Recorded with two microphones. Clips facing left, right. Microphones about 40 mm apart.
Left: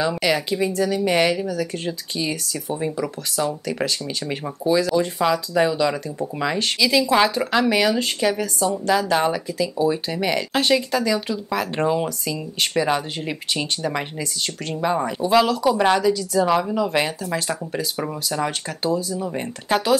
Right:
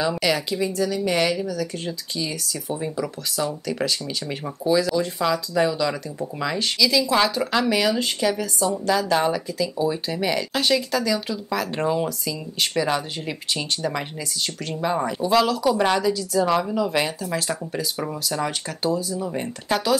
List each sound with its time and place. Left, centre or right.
0.0 s speech: centre